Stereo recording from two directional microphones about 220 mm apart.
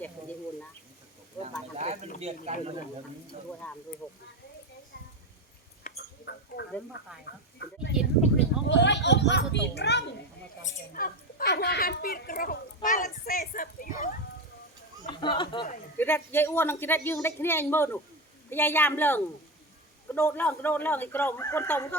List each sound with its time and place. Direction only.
1.4 s a sound: 30° right (ahead or behind)
2.2 s speech: 30° right (ahead or behind)
3.6 s speech: 5° left (ahead or behind)
5.8 s a sound: 50° left (ahead or behind)
7.6 s a child's voice: 50° left (ahead or behind)
10.9 s speech: 40° left (ahead or behind)
15.0 s speech: 20° left (ahead or behind)
16.0 s speech: 10° left (ahead or behind)